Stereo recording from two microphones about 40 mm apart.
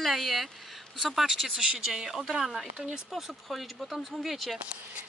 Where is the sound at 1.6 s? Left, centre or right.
Centre.